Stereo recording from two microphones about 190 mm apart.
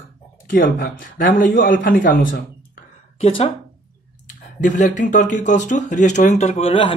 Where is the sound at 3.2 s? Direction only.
35° left (ahead or behind).